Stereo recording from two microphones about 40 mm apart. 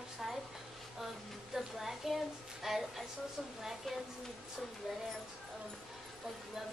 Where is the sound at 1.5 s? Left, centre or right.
Centre.